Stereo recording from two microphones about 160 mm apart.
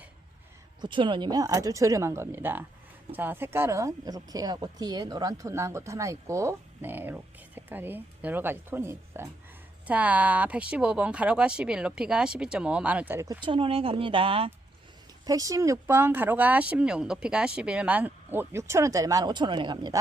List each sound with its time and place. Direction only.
0.8 s speech: 30° right (ahead or behind); by 13.2 s 10° right (ahead or behind)
13.4 s speech: 35° right (ahead or behind)
15.3 s speech: 20° right (ahead or behind)